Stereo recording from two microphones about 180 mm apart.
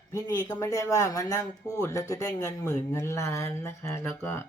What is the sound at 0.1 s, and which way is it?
Speech, 20° left (ahead or behind).